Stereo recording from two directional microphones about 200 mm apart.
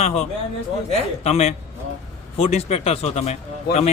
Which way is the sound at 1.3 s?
30° left (ahead or behind).